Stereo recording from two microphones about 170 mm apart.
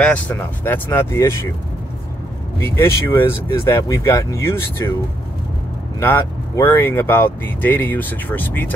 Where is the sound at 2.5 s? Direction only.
15° left (ahead or behind).